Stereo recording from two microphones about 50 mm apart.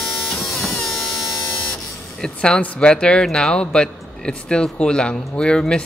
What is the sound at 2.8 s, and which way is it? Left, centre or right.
Speech, centre.